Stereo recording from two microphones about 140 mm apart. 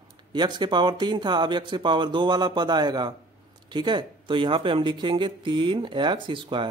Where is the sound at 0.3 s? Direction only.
30° right (ahead or behind).